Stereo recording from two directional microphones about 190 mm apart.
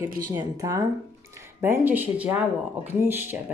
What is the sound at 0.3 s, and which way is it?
Speech, 15° right (ahead or behind).